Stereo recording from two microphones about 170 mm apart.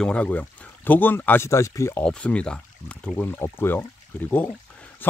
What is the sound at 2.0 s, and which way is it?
Speech, 5° left (ahead or behind).